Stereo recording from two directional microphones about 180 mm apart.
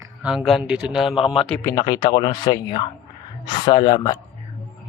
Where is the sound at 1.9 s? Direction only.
20° left (ahead or behind).